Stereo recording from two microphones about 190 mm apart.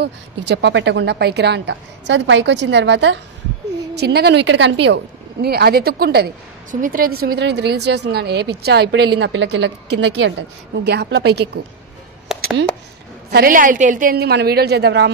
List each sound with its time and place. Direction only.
0.0 s a woman's voice: 65° right (ahead or behind)
12.3 s a sound: centre (ahead or behind)
13.3 s a woman's voice: 50° right (ahead or behind)